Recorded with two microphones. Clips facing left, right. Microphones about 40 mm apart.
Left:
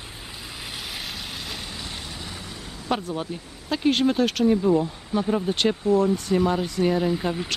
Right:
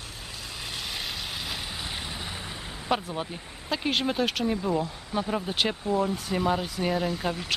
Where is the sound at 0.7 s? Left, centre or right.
Centre; by 2.6 s right.